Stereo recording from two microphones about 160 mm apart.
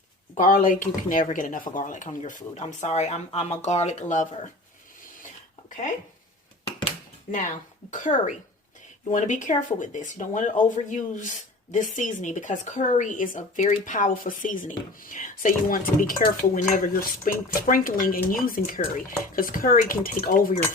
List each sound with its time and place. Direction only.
0.3 s speech: 55° left (ahead or behind)
6.7 s a sound: 35° left (ahead or behind)
7.3 s speech: 50° left (ahead or behind)